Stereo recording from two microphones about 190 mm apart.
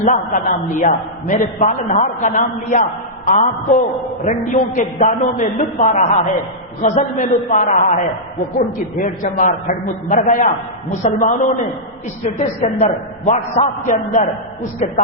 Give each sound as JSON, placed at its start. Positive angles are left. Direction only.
{"t": 0.0, "sound": "a man's voice", "side_deg": 40}